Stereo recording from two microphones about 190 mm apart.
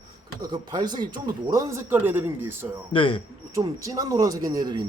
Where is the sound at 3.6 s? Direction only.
15° right (ahead or behind).